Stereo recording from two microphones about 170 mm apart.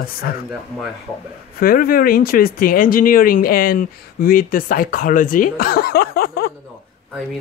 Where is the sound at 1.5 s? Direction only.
60° left (ahead or behind).